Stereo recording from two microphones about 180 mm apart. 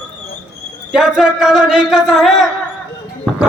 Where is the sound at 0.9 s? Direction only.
5° right (ahead or behind).